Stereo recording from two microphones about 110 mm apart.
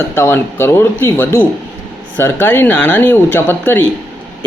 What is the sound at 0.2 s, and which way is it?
Speech, 20° left (ahead or behind).